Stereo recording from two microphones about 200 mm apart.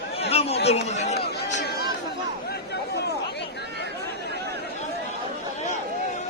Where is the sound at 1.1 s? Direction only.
55° left (ahead or behind).